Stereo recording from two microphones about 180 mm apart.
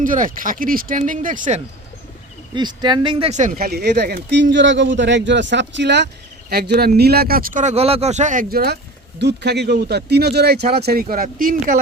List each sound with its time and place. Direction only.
0.0 s speech: 50° right (ahead or behind)
2.6 s speech: 25° right (ahead or behind); by 11.8 s 50° right (ahead or behind)